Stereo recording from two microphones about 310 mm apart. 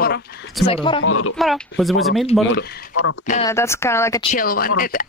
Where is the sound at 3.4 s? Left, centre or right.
Centre.